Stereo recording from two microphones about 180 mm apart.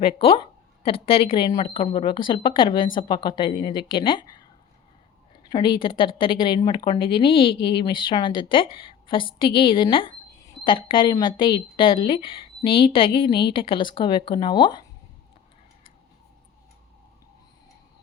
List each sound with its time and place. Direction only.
0.2 s speech: 30° left (ahead or behind)
5.5 s speech: 25° left (ahead or behind)